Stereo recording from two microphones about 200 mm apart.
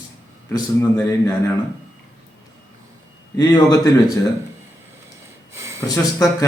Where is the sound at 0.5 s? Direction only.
15° left (ahead or behind).